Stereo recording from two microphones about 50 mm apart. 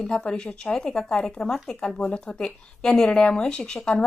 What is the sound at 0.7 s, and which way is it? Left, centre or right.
A woman's voice, centre.